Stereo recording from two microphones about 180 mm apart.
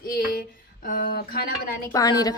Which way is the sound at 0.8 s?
50° left (ahead or behind).